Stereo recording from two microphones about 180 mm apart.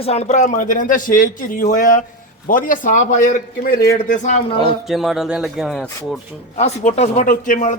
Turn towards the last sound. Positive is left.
turn(degrees=45)  # may be behind; listen again after turning